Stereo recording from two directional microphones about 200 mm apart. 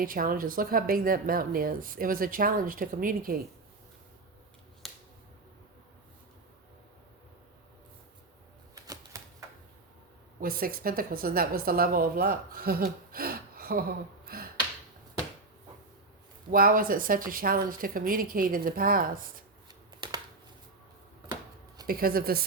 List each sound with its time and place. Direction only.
0.0 s speech: 45° right (ahead or behind)
4.8 s finger snapping: centre (ahead or behind)
10.4 s a woman's voice: 45° right (ahead or behind)
16.5 s speech: 45° right (ahead or behind)
20.0 s a sound: 20° right (ahead or behind)
21.8 s speech: 45° right (ahead or behind)